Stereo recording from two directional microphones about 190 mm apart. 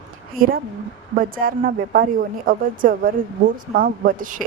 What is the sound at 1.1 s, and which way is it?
A woman's voice, 50° right (ahead or behind).